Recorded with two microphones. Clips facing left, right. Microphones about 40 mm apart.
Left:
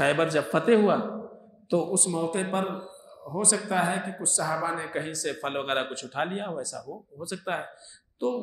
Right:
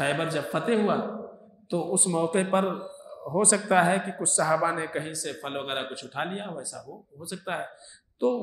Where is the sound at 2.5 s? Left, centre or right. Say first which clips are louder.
Right 4 dB; right.